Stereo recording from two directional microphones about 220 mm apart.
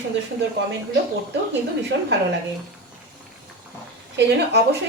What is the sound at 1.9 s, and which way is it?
Speech, 55° right (ahead or behind).